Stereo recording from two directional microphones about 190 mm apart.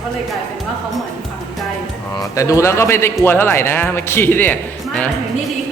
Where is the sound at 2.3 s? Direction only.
15° left (ahead or behind).